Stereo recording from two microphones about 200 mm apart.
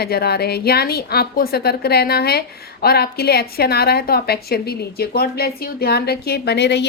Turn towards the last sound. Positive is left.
turn(degrees=55)  # may be behind; listen again after turning